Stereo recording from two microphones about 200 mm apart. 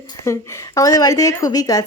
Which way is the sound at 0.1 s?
15° left (ahead or behind).